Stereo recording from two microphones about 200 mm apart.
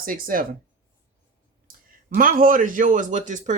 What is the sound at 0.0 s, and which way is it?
Speech, 45° right (ahead or behind).